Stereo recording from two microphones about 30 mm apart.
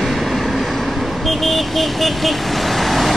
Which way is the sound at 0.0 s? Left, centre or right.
Centre.